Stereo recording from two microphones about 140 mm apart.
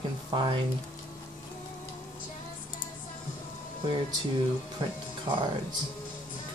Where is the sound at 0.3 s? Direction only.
35° right (ahead or behind).